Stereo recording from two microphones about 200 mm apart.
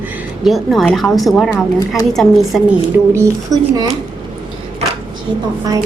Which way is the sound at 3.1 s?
15° right (ahead or behind).